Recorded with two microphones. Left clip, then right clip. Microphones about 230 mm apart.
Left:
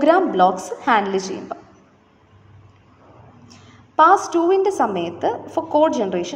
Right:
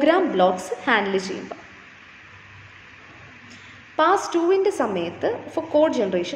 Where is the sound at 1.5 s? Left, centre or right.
Left.